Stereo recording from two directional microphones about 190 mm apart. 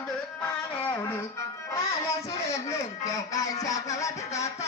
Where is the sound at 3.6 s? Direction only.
15° left (ahead or behind).